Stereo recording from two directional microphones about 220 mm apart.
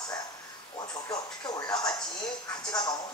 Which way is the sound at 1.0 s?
20° left (ahead or behind).